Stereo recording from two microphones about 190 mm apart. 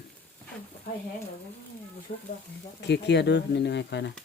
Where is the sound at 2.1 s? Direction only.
45° left (ahead or behind).